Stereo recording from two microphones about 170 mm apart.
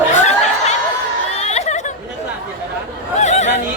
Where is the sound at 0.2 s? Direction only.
40° left (ahead or behind).